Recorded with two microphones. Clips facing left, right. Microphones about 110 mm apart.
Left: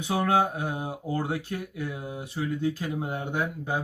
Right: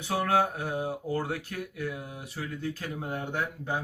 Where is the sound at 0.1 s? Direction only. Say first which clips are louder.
Left 2 dB; 20° left (ahead or behind).